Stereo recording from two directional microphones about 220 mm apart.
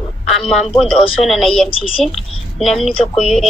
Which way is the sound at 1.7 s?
25° left (ahead or behind).